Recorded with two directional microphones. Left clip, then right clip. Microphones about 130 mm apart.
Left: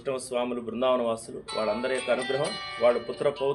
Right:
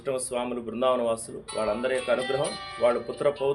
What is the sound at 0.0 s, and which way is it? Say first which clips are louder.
A man's voice: even; 20° right (ahead or behind).